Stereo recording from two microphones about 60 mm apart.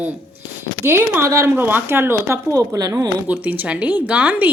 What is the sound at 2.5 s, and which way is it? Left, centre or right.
Speech, right.